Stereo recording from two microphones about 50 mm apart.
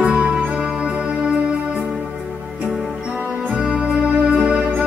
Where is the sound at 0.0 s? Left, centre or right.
Centre.